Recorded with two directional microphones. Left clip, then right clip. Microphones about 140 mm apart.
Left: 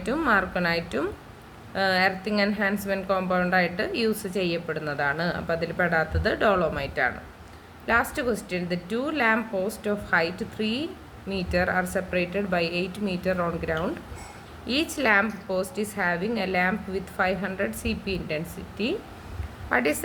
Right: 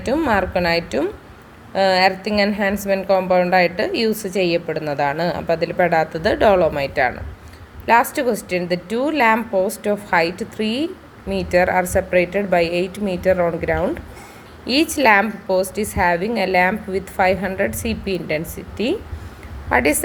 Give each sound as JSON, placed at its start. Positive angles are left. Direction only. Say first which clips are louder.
{"t": 0.0, "sound": "a woman's voice", "louder": "right 5 dB", "side_deg": -25}